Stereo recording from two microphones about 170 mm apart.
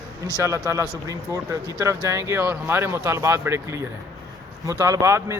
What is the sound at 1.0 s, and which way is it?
A man's voice, 20° right (ahead or behind).